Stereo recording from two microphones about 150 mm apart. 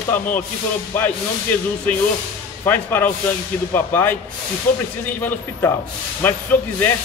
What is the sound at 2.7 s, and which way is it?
Speech, 10° left (ahead or behind).